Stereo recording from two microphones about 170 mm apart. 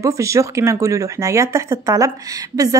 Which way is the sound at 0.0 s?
20° right (ahead or behind).